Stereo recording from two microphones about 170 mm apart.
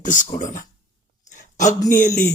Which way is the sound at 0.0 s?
50° left (ahead or behind).